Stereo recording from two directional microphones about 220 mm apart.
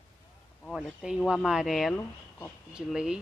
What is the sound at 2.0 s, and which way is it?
Speech, 15° left (ahead or behind).